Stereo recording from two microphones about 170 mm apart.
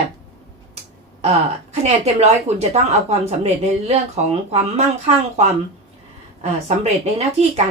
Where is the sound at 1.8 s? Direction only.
40° right (ahead or behind).